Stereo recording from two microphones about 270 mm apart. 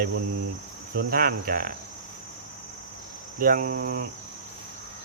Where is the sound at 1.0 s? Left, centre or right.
Right.